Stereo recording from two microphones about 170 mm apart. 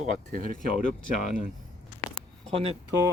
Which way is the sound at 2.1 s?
35° right (ahead or behind).